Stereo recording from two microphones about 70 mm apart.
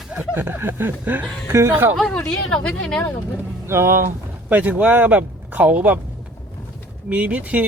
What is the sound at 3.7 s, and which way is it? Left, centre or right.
Speech, right.